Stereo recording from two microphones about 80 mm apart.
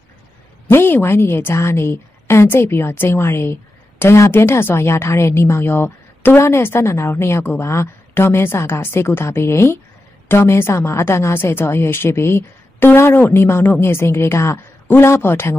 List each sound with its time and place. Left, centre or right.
0.7 s speech: left